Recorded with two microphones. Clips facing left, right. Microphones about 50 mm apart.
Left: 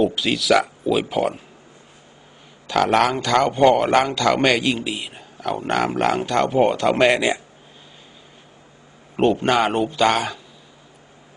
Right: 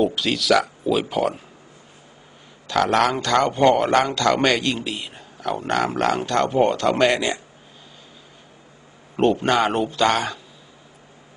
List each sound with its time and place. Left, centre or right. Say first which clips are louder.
0.0 s speech: left 1 dB; centre
2.8 s speech: left 1 dB; centre
3.1 s speech: left 1 dB; centre
5.1 s a sound: left 1 dB; centre
5.9 s speech: left 1 dB; centre
9.1 s speech: left 1 dB; centre